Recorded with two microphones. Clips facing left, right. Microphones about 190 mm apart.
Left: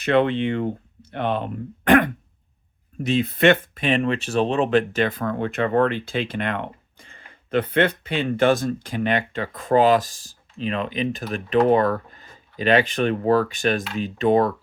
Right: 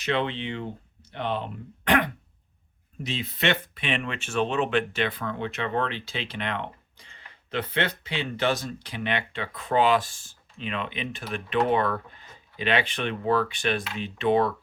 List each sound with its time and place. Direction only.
0.0 s speech: 55° left (ahead or behind)